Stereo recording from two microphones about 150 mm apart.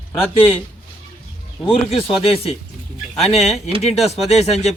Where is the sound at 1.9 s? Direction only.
40° left (ahead or behind).